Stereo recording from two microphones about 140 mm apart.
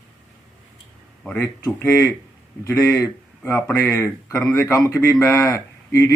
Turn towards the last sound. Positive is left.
turn(degrees=20)  # may be behind; listen again after turning